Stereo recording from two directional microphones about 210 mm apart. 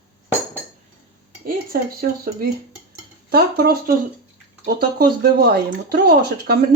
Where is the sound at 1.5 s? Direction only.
45° right (ahead or behind).